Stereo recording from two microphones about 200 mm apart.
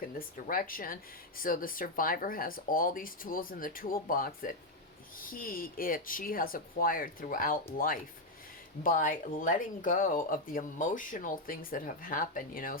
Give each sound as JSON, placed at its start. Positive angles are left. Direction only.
{"t": 0.4, "sound": "speech", "side_deg": 45}